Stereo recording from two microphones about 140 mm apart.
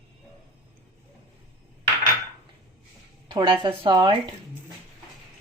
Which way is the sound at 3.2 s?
35° right (ahead or behind).